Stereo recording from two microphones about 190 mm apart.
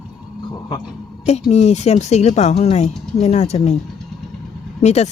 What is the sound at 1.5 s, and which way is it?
Speech, 35° left (ahead or behind).